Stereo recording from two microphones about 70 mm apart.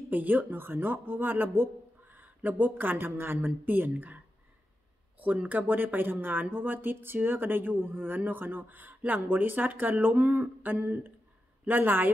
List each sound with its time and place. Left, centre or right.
0.1 s speech: right
5.2 s speech: right